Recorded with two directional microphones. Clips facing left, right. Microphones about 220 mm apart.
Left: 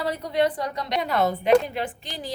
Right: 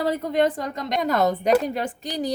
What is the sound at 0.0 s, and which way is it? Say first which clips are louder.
A woman's voice: right 2 dB; 50° right (ahead or behind).